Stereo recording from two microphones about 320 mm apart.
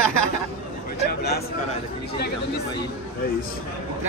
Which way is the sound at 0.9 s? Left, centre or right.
Left.